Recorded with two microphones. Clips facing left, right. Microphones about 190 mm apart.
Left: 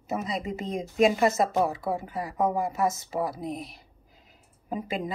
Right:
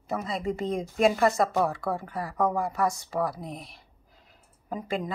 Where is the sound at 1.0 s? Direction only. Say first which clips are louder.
Even; 20° left (ahead or behind).